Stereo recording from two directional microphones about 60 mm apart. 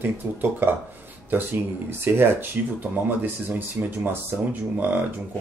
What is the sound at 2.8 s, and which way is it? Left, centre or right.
Speech, right.